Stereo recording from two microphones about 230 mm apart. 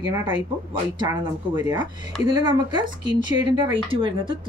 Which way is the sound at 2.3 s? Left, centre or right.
Centre.